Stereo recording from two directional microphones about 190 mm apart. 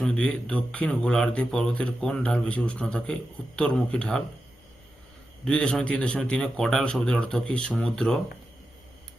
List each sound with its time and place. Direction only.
0.0 s speech: 5° left (ahead or behind)
5.5 s speech: 5° left (ahead or behind)